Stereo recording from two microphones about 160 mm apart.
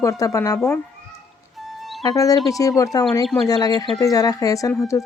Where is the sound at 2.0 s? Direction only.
20° left (ahead or behind).